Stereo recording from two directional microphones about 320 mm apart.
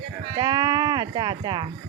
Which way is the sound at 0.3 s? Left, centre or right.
Centre.